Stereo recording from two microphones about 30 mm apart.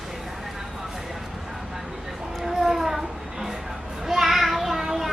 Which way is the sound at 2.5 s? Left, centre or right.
Centre.